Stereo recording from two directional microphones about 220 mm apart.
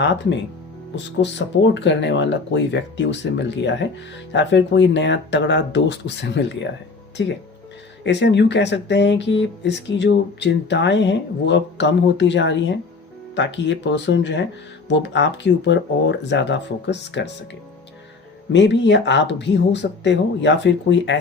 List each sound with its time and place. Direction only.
0.0 s speech: 55° left (ahead or behind)
18.5 s speech: 55° left (ahead or behind)